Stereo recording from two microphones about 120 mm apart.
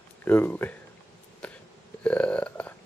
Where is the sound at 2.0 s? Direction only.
10° left (ahead or behind).